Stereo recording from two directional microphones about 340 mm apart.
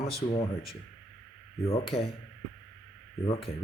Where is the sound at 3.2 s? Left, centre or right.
Centre.